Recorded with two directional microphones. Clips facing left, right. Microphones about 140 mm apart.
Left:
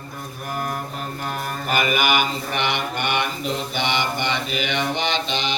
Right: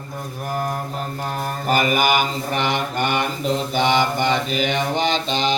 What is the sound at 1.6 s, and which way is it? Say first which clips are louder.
Mantra: right 3 dB; 40° right (ahead or behind).